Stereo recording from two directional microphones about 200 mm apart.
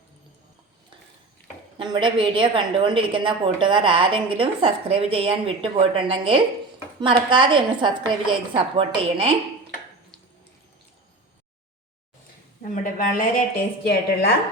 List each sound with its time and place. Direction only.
1.8 s a woman's voice: 25° right (ahead or behind)
12.6 s a woman's voice: 40° left (ahead or behind)